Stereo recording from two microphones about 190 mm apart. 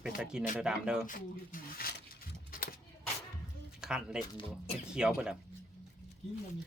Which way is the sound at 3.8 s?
5° right (ahead or behind).